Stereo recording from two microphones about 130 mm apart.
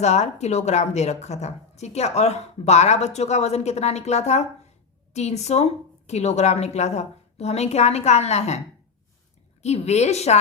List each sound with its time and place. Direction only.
0.0 s a woman's voice: 60° left (ahead or behind)
9.6 s a woman's voice: 55° left (ahead or behind)